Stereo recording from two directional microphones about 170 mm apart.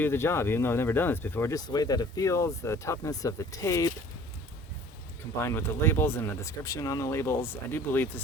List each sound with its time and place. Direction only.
0.0 s speech: 15° left (ahead or behind)
5.4 s speech: 15° left (ahead or behind)